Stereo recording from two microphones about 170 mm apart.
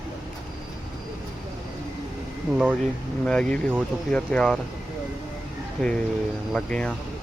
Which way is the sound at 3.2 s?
5° left (ahead or behind).